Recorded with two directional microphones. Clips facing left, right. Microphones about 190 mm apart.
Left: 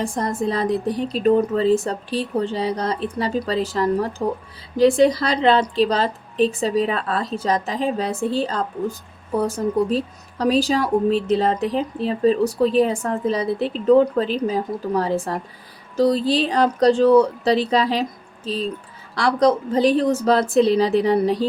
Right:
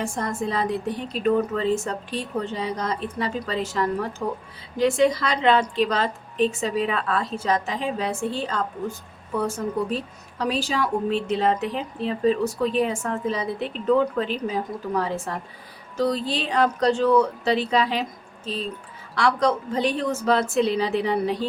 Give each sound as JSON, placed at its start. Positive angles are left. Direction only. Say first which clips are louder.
{"t": 0.0, "sound": "a woman's voice", "louder": "left 4 dB", "side_deg": 35}